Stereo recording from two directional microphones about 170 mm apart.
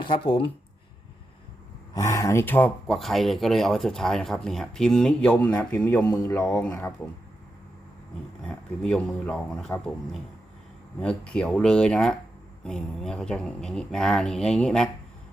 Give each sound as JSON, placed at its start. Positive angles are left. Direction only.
{"t": 0.0, "sound": "speech", "side_deg": 30}
{"t": 1.9, "sound": "speech", "side_deg": 20}
{"t": 8.4, "sound": "speech", "side_deg": 5}